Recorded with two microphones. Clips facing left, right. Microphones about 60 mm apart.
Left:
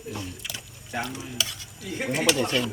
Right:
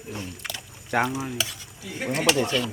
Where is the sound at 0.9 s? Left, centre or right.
Right.